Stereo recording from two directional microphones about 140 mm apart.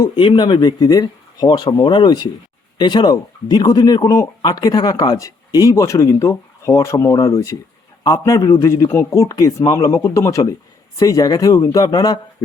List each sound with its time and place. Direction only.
0.0 s speech: 35° left (ahead or behind)